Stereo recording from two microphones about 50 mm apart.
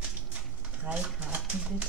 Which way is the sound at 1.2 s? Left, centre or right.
Right.